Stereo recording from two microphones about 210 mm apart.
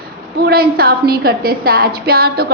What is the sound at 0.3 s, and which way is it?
A woman's voice, 45° right (ahead or behind).